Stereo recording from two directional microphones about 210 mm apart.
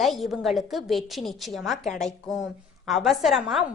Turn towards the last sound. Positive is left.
turn(degrees=0)  # may be behind; listen again after turning